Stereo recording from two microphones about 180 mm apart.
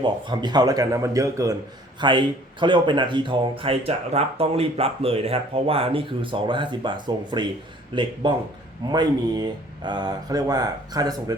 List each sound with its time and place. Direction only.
0.0 s speech: 25° right (ahead or behind)